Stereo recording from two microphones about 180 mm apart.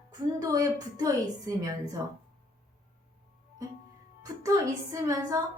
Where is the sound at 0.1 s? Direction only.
20° right (ahead or behind).